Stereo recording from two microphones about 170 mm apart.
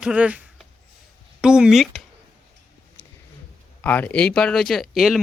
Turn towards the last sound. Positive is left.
turn(degrees=0)  # may be behind; listen again after turning